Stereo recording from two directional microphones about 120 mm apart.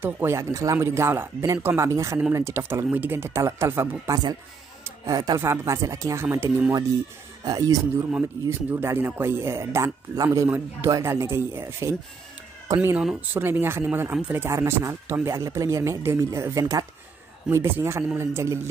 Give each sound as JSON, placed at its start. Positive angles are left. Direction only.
{"t": 0.0, "sound": "speech", "side_deg": -20}
{"t": 7.4, "sound": "speech", "side_deg": -30}
{"t": 8.5, "sound": "speech", "side_deg": -20}
{"t": 13.0, "sound": "speech", "side_deg": -15}